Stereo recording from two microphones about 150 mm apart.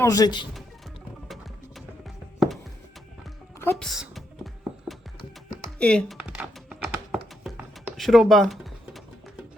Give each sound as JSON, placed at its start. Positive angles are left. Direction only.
{"t": 0.0, "sound": "speech", "side_deg": 25}
{"t": 1.3, "sound": "music", "side_deg": 0}
{"t": 3.6, "sound": "music", "side_deg": 5}
{"t": 5.8, "sound": "speech", "side_deg": 5}
{"t": 6.1, "sound": "computer keyboard", "side_deg": -5}